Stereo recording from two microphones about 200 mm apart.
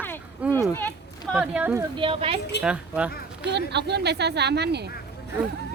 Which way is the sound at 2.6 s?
5° right (ahead or behind).